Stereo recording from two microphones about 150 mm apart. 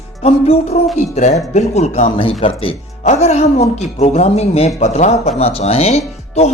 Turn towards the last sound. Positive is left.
turn(degrees=45)  # may be behind; listen again after turning